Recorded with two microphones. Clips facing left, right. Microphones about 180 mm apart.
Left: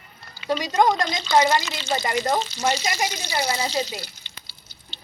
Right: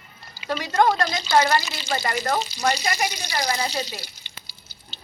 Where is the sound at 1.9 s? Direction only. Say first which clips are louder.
Left 1 dB; 20° left (ahead or behind).